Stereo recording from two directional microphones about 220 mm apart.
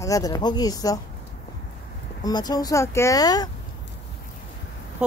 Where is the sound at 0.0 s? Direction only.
15° left (ahead or behind).